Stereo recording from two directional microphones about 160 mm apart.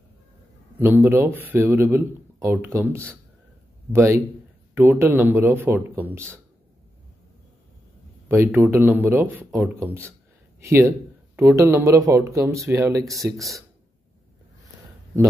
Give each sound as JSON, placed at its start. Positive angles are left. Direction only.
{"t": 0.7, "sound": "speech", "side_deg": -10}
{"t": 8.3, "sound": "speech", "side_deg": -15}
{"t": 13.2, "sound": "speech", "side_deg": 0}